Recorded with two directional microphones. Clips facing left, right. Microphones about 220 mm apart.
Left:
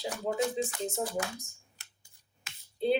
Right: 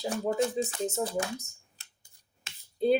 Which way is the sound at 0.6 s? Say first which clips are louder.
Right 2 dB; 45° right (ahead or behind).